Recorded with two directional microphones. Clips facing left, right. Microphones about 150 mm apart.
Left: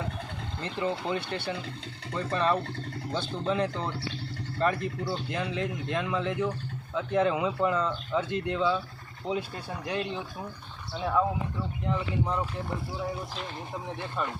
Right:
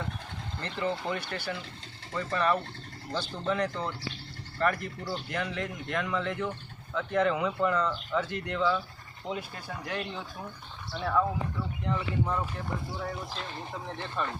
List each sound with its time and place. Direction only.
0.6 s speech: 15° left (ahead or behind)
9.8 s speech: 20° left (ahead or behind)